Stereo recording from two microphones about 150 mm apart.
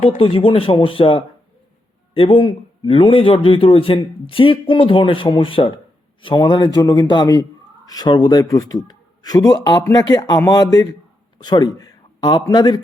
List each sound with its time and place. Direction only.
0.2 s a man's voice: 40° left (ahead or behind)